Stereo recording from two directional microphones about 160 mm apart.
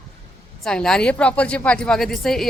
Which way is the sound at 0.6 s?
5° left (ahead or behind).